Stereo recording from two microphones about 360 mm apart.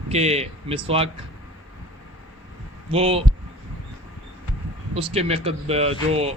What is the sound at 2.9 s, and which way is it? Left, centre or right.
Speech, centre.